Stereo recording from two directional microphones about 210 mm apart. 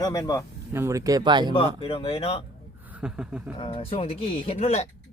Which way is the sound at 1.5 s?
25° left (ahead or behind).